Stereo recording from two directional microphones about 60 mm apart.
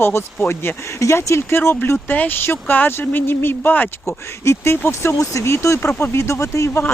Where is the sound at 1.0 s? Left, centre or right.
Left.